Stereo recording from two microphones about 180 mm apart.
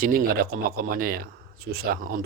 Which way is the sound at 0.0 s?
55° right (ahead or behind).